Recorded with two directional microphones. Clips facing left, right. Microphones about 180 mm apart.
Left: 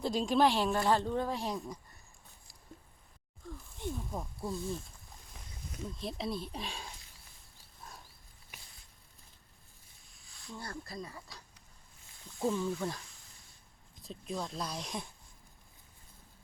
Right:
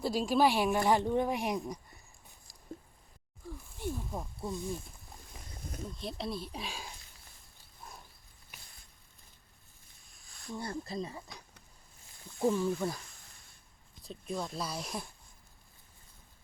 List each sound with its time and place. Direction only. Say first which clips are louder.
0.0 s speech: even; 5° right (ahead or behind)
3.4 s a sound: right 2 dB; 5° right (ahead or behind)
6.0 s speech: left 1 dB; centre (ahead or behind)
10.5 s speech: right 5 dB; 20° right (ahead or behind)
14.0 s speech: right 1 dB; centre (ahead or behind)